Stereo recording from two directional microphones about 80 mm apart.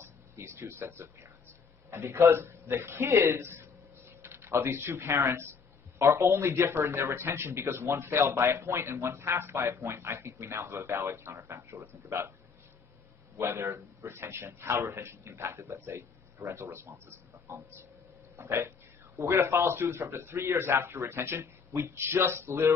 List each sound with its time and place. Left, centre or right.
0.0 s speech: right
13.4 s speech: right